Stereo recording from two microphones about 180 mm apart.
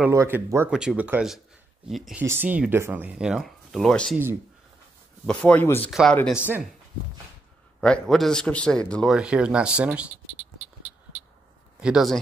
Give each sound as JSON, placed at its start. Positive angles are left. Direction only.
{"t": 0.0, "sound": "speech", "side_deg": -15}
{"t": 0.7, "sound": "a man's voice", "side_deg": -5}
{"t": 5.2, "sound": "speech", "side_deg": 5}
{"t": 5.9, "sound": "a man's voice", "side_deg": 0}
{"t": 6.1, "sound": "speech", "side_deg": 10}
{"t": 7.8, "sound": "a man's voice", "side_deg": 5}
{"t": 11.8, "sound": "a man's voice", "side_deg": 0}